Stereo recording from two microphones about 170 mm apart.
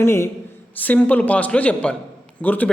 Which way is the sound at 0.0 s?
15° left (ahead or behind).